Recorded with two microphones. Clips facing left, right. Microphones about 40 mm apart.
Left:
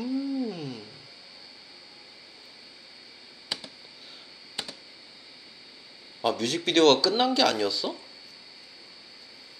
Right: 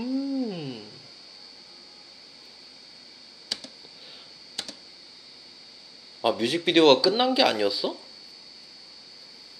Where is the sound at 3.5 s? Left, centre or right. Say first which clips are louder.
Left 1 dB; centre.